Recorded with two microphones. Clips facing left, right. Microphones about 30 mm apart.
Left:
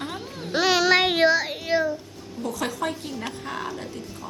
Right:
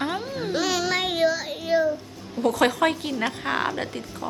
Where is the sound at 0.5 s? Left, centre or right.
Left.